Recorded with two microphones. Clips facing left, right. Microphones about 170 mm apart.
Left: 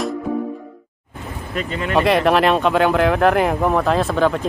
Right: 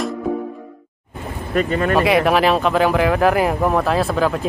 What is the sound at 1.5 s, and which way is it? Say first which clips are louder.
Speech: right 6 dB; 50° right (ahead or behind).